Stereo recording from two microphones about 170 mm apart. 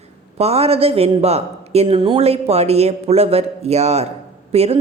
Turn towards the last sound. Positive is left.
turn(degrees=-35)  # may be behind; listen again after turning